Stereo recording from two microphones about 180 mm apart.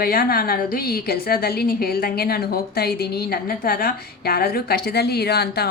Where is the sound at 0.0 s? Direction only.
55° left (ahead or behind).